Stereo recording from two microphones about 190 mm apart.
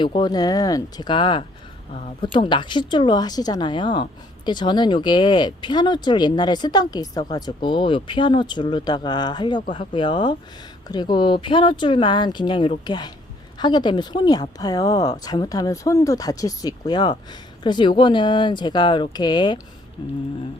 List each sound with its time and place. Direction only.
0.0 s speech: 25° left (ahead or behind)